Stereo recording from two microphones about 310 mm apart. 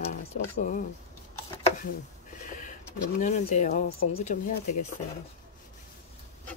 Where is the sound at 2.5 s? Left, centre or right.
Left.